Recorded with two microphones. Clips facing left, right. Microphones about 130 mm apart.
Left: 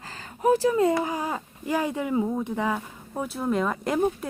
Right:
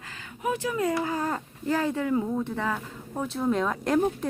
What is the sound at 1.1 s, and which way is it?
Speech, 10° left (ahead or behind).